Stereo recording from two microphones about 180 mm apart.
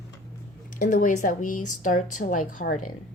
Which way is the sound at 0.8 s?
45° left (ahead or behind).